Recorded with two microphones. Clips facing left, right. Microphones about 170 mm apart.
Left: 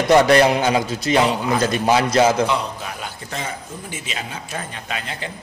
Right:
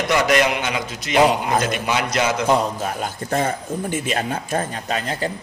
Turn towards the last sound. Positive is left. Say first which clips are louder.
# right 6 dB
turn(degrees=-40)  # may be behind; listen again after turning